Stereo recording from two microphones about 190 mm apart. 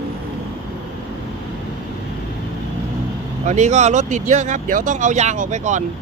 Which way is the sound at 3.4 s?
35° right (ahead or behind).